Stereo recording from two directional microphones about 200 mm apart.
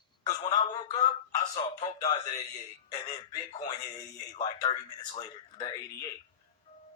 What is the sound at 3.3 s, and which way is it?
Speech, 20° left (ahead or behind).